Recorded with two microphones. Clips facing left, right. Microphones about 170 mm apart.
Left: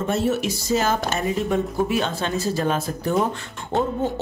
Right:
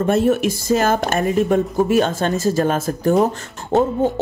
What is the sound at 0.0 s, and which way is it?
Speech, 55° right (ahead or behind).